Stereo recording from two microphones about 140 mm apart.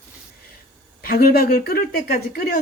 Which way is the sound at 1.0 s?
90° left.